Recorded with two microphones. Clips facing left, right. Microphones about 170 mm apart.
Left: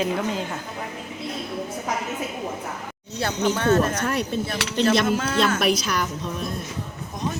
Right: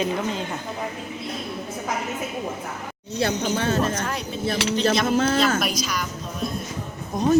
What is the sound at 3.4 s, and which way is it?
Speech, 60° left (ahead or behind).